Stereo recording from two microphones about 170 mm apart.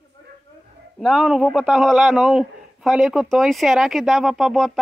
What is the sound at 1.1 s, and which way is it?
A man's voice, centre (ahead or behind).